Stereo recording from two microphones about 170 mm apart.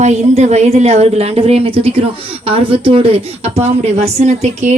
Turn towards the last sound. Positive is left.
turn(degrees=-40)  # may be behind; listen again after turning